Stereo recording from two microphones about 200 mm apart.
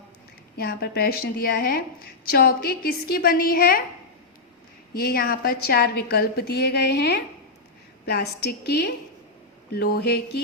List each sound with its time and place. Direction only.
0.5 s a woman's voice: 50° left (ahead or behind)
4.9 s a woman's voice: 50° left (ahead or behind)